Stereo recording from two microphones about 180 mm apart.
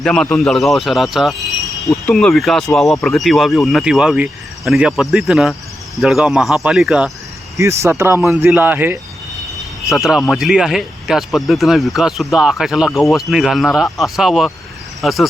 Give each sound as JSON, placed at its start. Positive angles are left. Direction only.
{"t": 0.0, "sound": "speech", "side_deg": 0}
{"t": 7.5, "sound": "speech", "side_deg": -15}
{"t": 9.6, "sound": "speech", "side_deg": 0}